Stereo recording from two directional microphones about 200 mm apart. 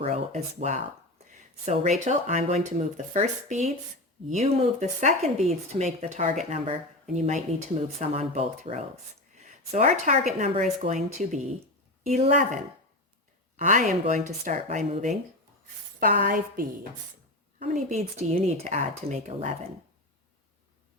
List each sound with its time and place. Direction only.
0.0 s speech: 35° right (ahead or behind)
13.6 s speech: 40° right (ahead or behind)
14.8 s speech: 30° right (ahead or behind)
16.0 s a woman's voice: 45° right (ahead or behind)
17.6 s speech: 35° right (ahead or behind)